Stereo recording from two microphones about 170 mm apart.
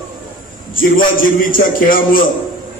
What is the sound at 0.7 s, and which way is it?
A man's voice, 55° left (ahead or behind).